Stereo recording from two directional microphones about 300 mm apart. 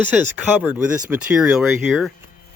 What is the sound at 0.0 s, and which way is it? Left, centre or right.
Speech, centre.